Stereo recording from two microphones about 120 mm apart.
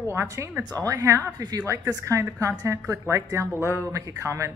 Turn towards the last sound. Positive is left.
turn(degrees=-25)  # may be behind; listen again after turning